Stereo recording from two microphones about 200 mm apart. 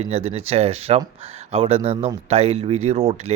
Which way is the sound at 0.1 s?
30° right (ahead or behind).